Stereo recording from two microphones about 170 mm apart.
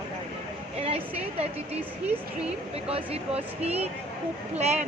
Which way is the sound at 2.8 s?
35° right (ahead or behind).